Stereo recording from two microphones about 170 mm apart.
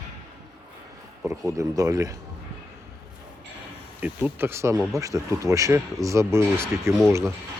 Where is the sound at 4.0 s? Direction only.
10° right (ahead or behind).